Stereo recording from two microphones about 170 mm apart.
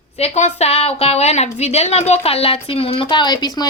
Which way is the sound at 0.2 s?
40° left (ahead or behind).